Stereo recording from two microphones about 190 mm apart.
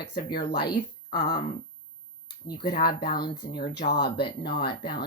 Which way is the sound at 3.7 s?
60° left (ahead or behind).